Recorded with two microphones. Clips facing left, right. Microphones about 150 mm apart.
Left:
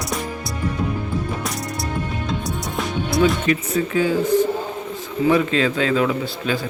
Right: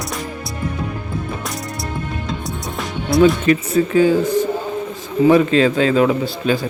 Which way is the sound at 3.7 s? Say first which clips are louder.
Right 6 dB; 35° right (ahead or behind).